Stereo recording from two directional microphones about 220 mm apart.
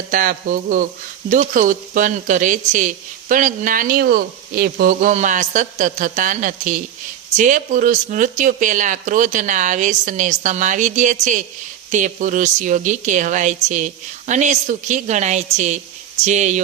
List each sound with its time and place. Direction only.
0.1 s speech: 40° right (ahead or behind)